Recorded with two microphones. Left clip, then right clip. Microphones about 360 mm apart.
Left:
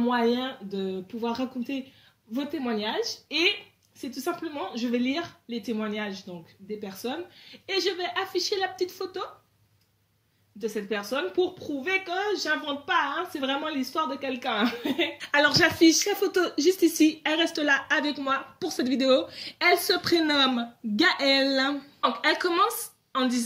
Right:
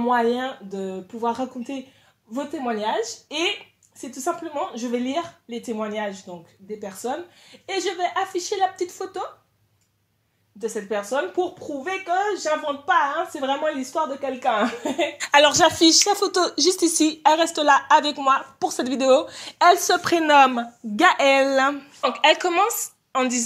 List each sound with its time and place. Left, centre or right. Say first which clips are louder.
0.1 s a woman's voice: right 8 dB; centre
10.6 s a woman's voice: right 4 dB; centre